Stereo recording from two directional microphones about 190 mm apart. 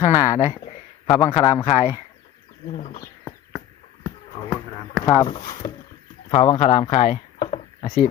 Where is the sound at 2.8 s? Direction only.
45° left (ahead or behind).